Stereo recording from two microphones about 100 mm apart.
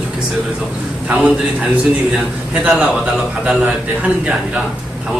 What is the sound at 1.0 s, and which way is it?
Speech, 10° right (ahead or behind).